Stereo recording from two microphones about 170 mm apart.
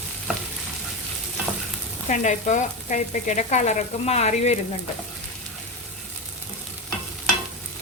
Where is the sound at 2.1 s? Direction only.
45° left (ahead or behind).